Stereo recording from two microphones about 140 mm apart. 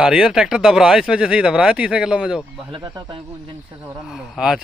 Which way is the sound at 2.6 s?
35° right (ahead or behind).